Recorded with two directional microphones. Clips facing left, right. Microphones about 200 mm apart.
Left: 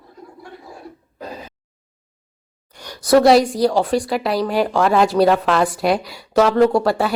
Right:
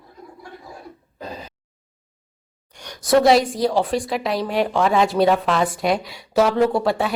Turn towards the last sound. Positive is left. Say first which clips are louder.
# left 3 dB
turn(degrees=0)  # may be behind; listen again after turning